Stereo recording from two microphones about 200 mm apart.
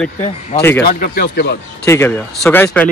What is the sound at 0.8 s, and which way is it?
Speech, 45° left (ahead or behind).